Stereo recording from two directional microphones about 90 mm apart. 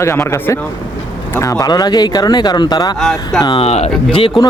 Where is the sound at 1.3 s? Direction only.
35° left (ahead or behind).